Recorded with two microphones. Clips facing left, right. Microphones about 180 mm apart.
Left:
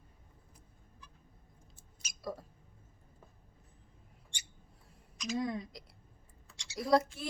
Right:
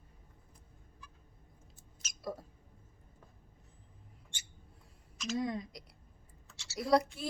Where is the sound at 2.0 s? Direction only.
10° left (ahead or behind).